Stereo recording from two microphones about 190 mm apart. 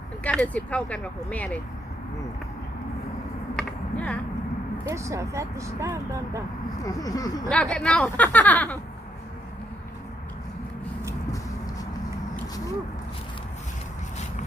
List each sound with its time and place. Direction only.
0.3 s speech: 5° left (ahead or behind)
3.5 s a sound: 5° left (ahead or behind)
4.9 s speech: 15° right (ahead or behind)
6.8 s speech: 20° left (ahead or behind)
7.5 s speech: 5° left (ahead or behind)